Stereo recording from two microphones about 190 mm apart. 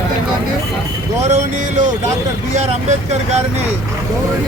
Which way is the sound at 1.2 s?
35° right (ahead or behind).